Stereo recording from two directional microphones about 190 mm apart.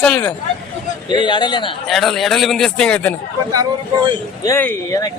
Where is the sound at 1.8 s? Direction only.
Centre (ahead or behind).